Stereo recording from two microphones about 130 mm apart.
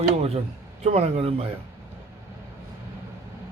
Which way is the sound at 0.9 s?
50° right (ahead or behind).